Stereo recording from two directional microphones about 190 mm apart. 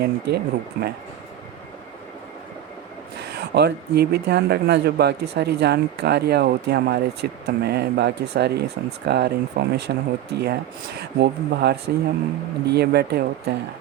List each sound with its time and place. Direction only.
0.0 s speech: 55° right (ahead or behind)
3.2 s speech: 60° right (ahead or behind)